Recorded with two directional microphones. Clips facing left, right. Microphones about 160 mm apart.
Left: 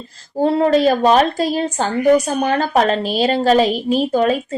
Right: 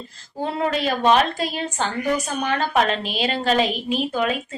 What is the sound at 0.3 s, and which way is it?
A woman's voice, 35° left (ahead or behind).